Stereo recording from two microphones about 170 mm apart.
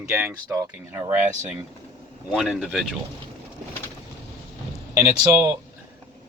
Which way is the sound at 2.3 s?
5° right (ahead or behind).